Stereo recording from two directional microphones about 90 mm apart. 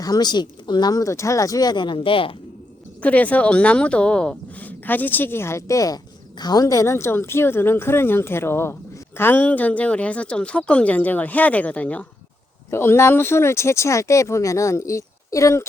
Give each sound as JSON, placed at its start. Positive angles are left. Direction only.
{"t": 0.0, "sound": "speech", "side_deg": 50}
{"t": 3.0, "sound": "speech", "side_deg": 15}
{"t": 12.7, "sound": "speech", "side_deg": 30}